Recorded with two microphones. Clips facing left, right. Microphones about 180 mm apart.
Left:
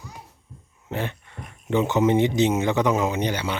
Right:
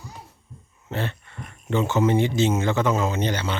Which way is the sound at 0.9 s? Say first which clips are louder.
Even; 15° left (ahead or behind).